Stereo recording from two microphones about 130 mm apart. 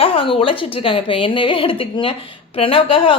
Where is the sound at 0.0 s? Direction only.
45° left (ahead or behind).